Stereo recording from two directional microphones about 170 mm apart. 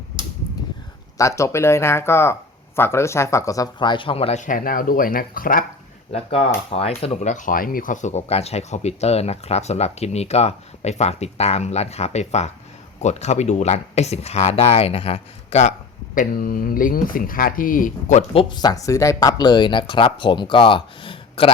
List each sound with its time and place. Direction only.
1.2 s speech: 15° left (ahead or behind); by 4.4 s 35° left (ahead or behind)
4.4 s speech: 55° left (ahead or behind)
6.1 s speech: 35° left (ahead or behind)
16.1 s speech: 55° left (ahead or behind)
18.5 s speech: 20° left (ahead or behind)